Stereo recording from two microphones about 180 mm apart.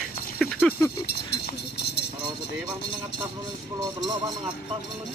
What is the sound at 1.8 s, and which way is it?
Vehicle, 70° left (ahead or behind).